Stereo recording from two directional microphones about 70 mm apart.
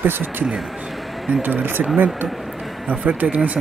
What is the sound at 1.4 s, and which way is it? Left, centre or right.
Speech, right.